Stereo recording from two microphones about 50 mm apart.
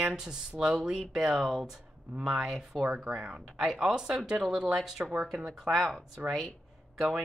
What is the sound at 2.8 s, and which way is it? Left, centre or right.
Speech, right.